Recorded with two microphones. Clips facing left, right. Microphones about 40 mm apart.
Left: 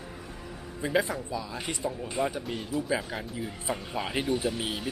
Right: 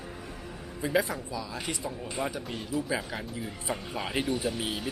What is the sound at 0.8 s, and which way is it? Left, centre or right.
Speech, centre.